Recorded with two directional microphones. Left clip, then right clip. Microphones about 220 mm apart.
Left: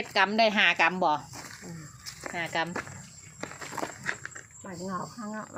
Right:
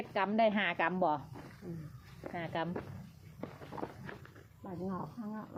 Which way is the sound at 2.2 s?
10° left (ahead or behind).